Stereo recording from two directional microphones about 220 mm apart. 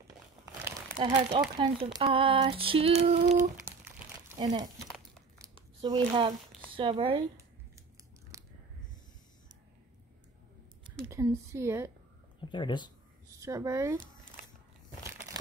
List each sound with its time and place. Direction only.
0.7 s crumpling: 20° right (ahead or behind)
1.6 s female singing: 20° right (ahead or behind)
4.4 s speech: 20° right (ahead or behind)
4.8 s crumpling: centre (ahead or behind)
5.8 s female singing: 20° right (ahead or behind)
6.7 s speech: 25° right (ahead or behind)
8.3 s biting: 15° right (ahead or behind)
11.4 s speech: 10° right (ahead or behind)
12.4 s speech: 20° left (ahead or behind)
13.3 s speech: 15° right (ahead or behind)